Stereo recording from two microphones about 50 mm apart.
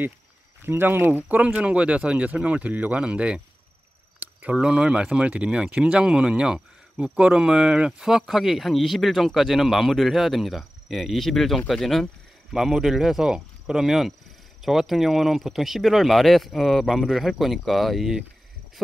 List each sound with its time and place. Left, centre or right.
0.7 s speech: right
1.1 s speech: right; by 18.2 s centre